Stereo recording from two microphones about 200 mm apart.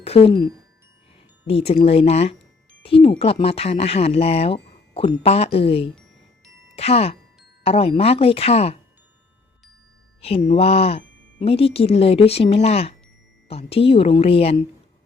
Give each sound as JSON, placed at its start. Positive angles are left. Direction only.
{"t": 0.0, "sound": "speech", "side_deg": 30}
{"t": 10.2, "sound": "music", "side_deg": 30}
{"t": 10.5, "sound": "speech", "side_deg": 30}